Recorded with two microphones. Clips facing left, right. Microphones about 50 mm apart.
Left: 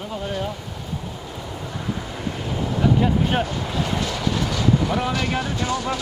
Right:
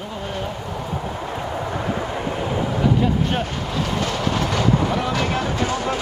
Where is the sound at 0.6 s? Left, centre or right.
Right.